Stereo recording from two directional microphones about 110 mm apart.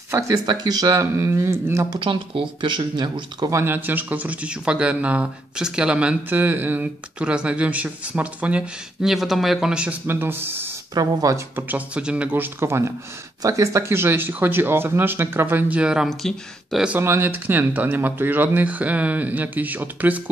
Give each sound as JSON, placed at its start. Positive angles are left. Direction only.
{"t": 0.1, "sound": "speech", "side_deg": -30}
{"t": 0.8, "sound": "speech", "side_deg": -25}
{"t": 1.9, "sound": "speech", "side_deg": -50}
{"t": 3.4, "sound": "speech", "side_deg": -25}
{"t": 10.0, "sound": "speech", "side_deg": -20}
{"t": 11.0, "sound": "speech", "side_deg": -35}
{"t": 11.5, "sound": "speech", "side_deg": -15}
{"t": 12.5, "sound": "speech", "side_deg": -25}
{"t": 17.0, "sound": "speech", "side_deg": -20}